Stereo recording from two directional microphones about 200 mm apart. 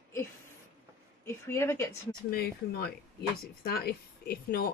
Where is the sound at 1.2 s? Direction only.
15° left (ahead or behind).